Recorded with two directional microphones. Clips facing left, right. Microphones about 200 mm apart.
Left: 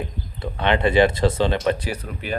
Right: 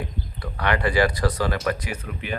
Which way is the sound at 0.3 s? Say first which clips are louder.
Left 4 dB; 25° left (ahead or behind).